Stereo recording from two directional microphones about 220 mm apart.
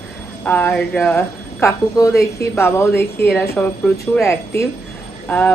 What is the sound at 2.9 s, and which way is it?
Speech, 50° left (ahead or behind).